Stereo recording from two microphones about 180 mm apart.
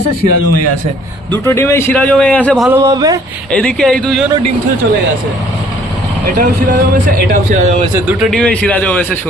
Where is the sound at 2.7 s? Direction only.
15° right (ahead or behind).